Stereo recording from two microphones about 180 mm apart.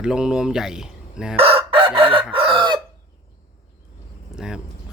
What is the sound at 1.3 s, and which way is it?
Chicken, 30° right (ahead or behind).